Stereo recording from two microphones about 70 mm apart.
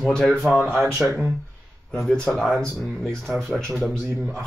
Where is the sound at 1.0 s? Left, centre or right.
Centre.